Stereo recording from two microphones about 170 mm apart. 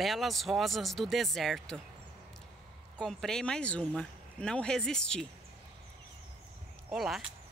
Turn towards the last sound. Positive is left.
turn(degrees=0)  # may be behind; listen again after turning